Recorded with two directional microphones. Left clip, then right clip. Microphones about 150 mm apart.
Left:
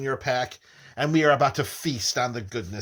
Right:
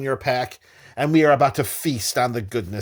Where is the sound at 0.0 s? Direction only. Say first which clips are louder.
Right 3 dB; 50° right (ahead or behind).